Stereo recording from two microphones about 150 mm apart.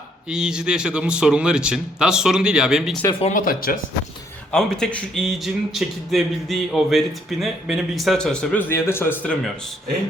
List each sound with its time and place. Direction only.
0.3 s a man's voice: 5° right (ahead or behind)
3.1 s speech: 40° left (ahead or behind)
3.3 s speech: 70° left (ahead or behind)
4.5 s a man's voice: 5° left (ahead or behind)